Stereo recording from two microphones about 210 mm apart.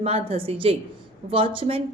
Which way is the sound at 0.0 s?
25° right (ahead or behind).